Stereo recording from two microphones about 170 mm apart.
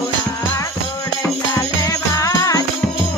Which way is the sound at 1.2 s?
20° left (ahead or behind).